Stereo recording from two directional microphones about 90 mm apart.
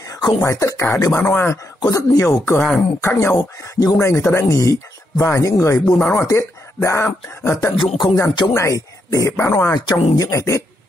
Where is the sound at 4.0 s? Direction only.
30° left (ahead or behind).